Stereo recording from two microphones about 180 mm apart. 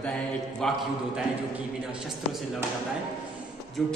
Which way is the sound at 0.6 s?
5° left (ahead or behind).